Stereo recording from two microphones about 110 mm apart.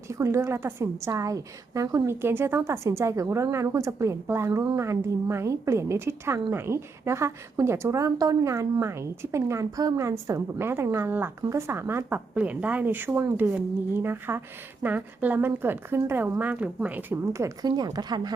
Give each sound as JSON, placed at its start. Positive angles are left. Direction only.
{"t": 0.1, "sound": "speech", "side_deg": -25}
{"t": 2.2, "sound": "speech", "side_deg": -20}
{"t": 17.7, "sound": "a woman's voice", "side_deg": -40}